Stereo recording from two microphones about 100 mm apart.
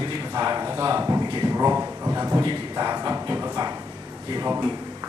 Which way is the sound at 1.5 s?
30° right (ahead or behind).